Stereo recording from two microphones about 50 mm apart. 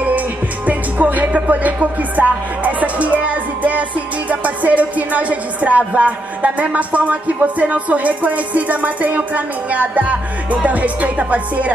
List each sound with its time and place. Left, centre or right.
0.7 s music: right